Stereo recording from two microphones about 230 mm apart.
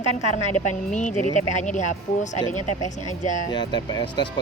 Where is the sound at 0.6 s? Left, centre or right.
Left.